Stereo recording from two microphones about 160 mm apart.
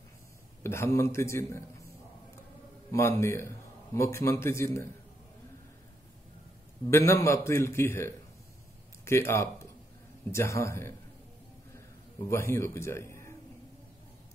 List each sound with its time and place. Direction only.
0.7 s a man's voice: 15° left (ahead or behind)
2.9 s a man's voice: 15° left (ahead or behind)
6.9 s a man's voice: 20° left (ahead or behind)
12.3 s a man's voice: 15° left (ahead or behind)